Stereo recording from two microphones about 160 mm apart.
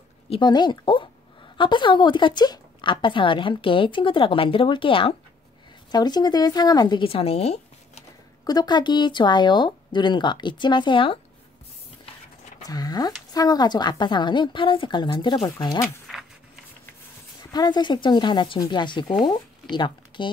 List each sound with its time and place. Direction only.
0.3 s a woman's voice: 25° left (ahead or behind)
8.5 s speech: 25° left (ahead or behind)
12.6 s speech: 25° left (ahead or behind)
17.4 s speech: 25° left (ahead or behind)